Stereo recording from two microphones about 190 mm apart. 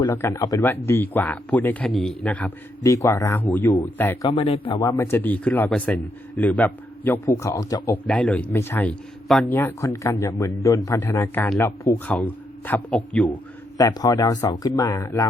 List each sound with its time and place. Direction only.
0.1 s speech: 10° left (ahead or behind)
4.3 s speech: 30° left (ahead or behind)
8.0 s speech: 5° left (ahead or behind)
9.5 s speech: 10° left (ahead or behind)
13.7 s speech: 20° left (ahead or behind)